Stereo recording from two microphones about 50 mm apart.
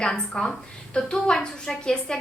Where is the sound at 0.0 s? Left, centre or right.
Centre.